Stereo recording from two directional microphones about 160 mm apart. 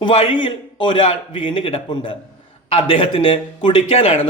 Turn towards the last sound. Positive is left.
turn(degrees=40)  # may be behind; listen again after turning